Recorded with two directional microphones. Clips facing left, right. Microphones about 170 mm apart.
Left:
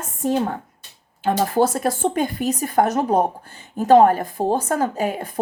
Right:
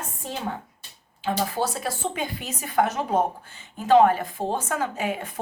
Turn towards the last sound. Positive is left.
turn(degrees=35)  # may be behind; listen again after turning